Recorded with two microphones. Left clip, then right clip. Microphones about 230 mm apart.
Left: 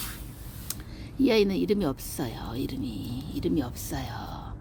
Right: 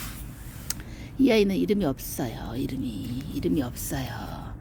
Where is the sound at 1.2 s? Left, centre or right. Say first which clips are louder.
Right 2 dB; centre.